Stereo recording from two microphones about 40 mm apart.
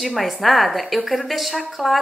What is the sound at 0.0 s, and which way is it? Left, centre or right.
Speech, centre.